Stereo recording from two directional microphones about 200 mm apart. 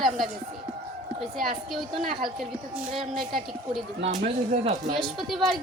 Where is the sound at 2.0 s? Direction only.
45° right (ahead or behind).